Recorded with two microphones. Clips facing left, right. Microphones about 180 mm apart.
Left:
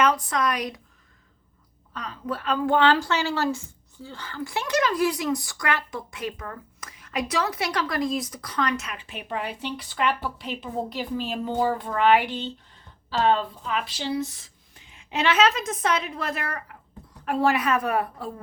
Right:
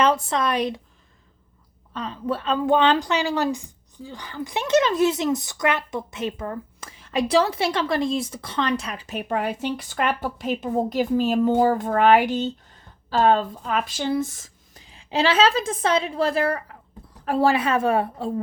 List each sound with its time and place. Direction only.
0.0 s a woman's voice: 25° right (ahead or behind)
1.9 s a woman's voice: 25° right (ahead or behind)